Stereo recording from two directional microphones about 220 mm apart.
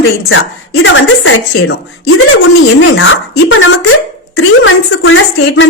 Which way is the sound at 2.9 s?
65° left (ahead or behind).